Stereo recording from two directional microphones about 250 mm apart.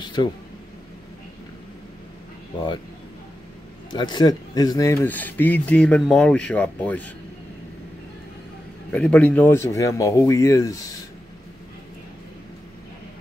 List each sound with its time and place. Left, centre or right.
0.0 s a sound: centre
3.9 s speech: centre
8.9 s speech: centre